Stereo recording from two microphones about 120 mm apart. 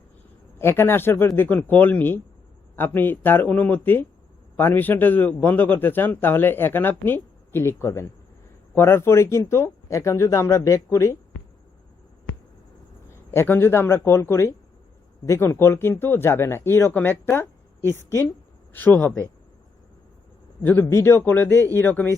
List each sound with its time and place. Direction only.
0.6 s a man's voice: 20° left (ahead or behind)
13.1 s a man's voice: 20° left (ahead or behind)
20.9 s a man's voice: 20° left (ahead or behind)